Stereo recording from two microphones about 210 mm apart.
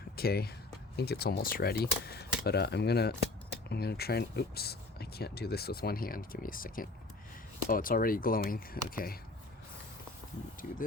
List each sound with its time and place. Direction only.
0.2 s speech: 50° left (ahead or behind)